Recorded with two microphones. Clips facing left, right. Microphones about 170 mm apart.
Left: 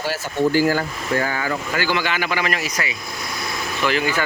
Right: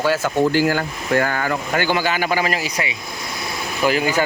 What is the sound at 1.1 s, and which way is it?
Speech, 60° right (ahead or behind).